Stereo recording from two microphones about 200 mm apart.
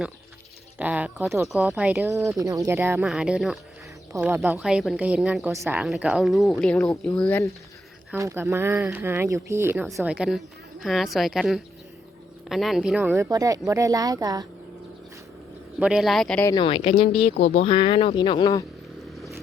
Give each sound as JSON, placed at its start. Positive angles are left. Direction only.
{"t": 0.8, "sound": "speech", "side_deg": -5}
{"t": 4.1, "sound": "speech", "side_deg": -15}
{"t": 4.6, "sound": "a woman's voice", "side_deg": 0}
{"t": 8.1, "sound": "a woman's voice", "side_deg": -10}
{"t": 15.8, "sound": "a woman's voice", "side_deg": -5}
{"t": 16.5, "sound": "speech", "side_deg": 25}